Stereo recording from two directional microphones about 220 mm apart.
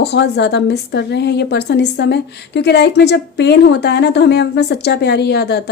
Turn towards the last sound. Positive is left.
turn(degrees=50)  # may be behind; listen again after turning